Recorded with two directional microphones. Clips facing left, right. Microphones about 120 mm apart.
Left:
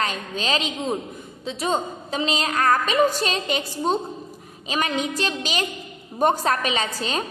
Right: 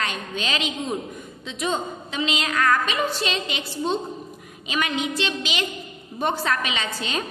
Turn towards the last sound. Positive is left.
turn(degrees=40)  # may be behind; listen again after turning